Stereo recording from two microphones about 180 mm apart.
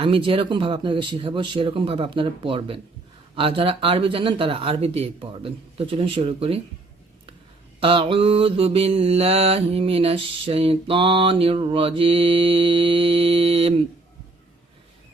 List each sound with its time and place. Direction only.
0.0 s speech: 30° right (ahead or behind)
3.3 s mantra: 30° right (ahead or behind)
7.8 s mantra: 30° right (ahead or behind)